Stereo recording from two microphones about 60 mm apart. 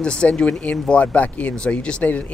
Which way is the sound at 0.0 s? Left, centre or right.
Centre.